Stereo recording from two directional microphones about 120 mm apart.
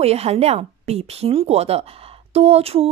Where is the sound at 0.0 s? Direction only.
60° right (ahead or behind).